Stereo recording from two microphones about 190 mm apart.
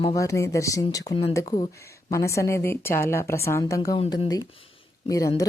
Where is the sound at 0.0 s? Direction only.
20° left (ahead or behind).